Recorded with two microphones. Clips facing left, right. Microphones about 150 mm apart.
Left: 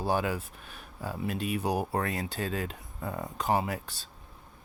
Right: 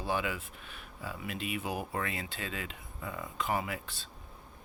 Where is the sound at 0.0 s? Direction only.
40° left (ahead or behind).